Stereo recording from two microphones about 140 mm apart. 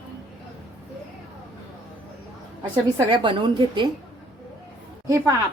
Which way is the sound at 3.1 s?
35° right (ahead or behind).